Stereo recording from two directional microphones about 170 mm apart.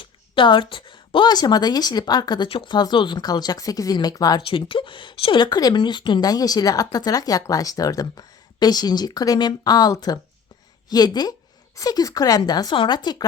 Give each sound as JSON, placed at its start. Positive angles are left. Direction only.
{"t": 0.0, "sound": "a woman's voice", "side_deg": 30}